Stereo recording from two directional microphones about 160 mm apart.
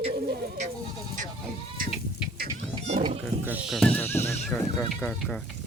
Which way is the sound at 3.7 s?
5° left (ahead or behind).